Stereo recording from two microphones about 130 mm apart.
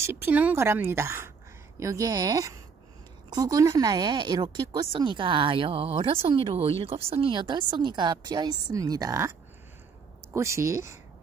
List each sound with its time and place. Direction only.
0.0 s a woman's voice: 15° right (ahead or behind)
10.3 s a woman's voice: 20° right (ahead or behind)